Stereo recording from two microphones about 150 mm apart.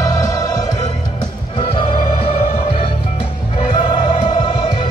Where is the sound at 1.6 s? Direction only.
35° left (ahead or behind).